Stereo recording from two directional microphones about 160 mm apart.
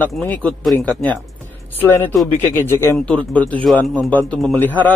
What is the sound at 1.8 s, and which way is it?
A man's voice, 15° left (ahead or behind).